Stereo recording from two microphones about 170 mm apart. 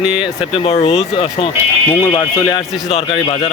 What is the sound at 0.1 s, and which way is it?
Speech, 30° left (ahead or behind).